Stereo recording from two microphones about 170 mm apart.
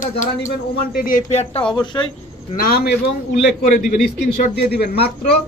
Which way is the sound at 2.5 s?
60° left (ahead or behind).